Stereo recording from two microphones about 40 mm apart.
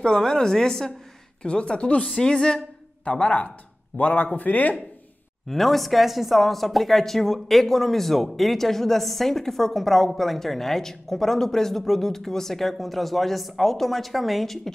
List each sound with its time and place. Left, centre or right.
0.0 s a woman's voice: centre
2.1 s a woman's voice: centre
3.1 s speech: left
4.0 s speech: left
5.5 s a woman's voice: centre